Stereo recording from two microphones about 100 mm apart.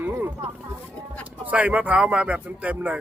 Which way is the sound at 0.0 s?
20° right (ahead or behind).